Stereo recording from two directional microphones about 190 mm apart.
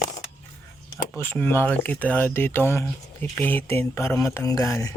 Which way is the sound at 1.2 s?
10° left (ahead or behind).